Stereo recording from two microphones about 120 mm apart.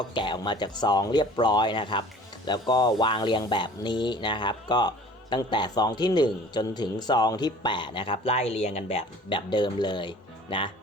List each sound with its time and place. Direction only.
0.0 s a man's voice: 40° left (ahead or behind)
9.5 s speech: 40° left (ahead or behind)